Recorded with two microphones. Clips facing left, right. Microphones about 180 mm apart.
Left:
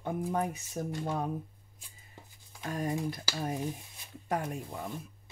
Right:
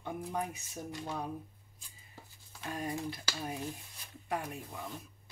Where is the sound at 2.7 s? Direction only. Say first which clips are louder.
Left 5 dB; 45° left (ahead or behind).